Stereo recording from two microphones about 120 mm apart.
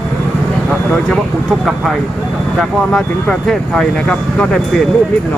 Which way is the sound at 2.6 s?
5° left (ahead or behind).